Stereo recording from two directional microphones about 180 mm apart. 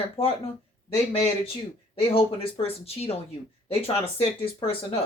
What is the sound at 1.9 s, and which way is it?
Speech, 30° left (ahead or behind).